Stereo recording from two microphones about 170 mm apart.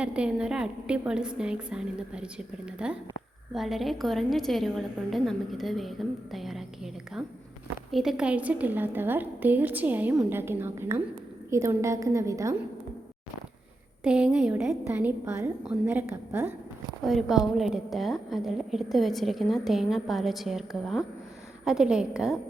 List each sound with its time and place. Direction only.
0.0 s a woman's voice: 5° right (ahead or behind)
14.0 s a woman's voice: 5° right (ahead or behind)
14.6 s a woman's voice: 15° right (ahead or behind)
17.0 s a woman's voice: centre (ahead or behind)